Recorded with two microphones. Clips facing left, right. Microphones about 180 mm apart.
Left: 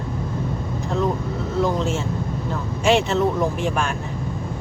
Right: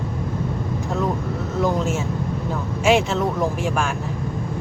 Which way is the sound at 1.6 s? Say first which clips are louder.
Right 3 dB; 10° right (ahead or behind).